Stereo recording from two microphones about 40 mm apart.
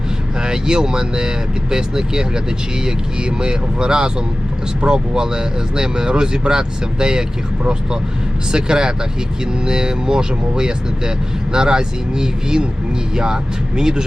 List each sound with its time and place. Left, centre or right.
0.3 s speech: centre